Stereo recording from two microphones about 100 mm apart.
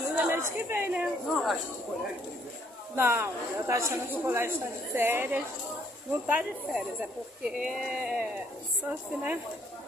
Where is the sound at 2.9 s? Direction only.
25° right (ahead or behind).